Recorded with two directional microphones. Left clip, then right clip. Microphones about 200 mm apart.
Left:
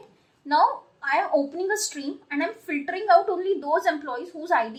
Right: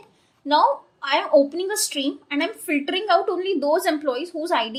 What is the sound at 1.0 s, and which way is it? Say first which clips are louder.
A woman's voice: right 5 dB; 40° right (ahead or behind).